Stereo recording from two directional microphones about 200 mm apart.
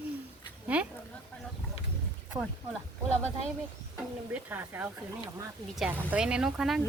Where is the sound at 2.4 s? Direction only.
20° right (ahead or behind).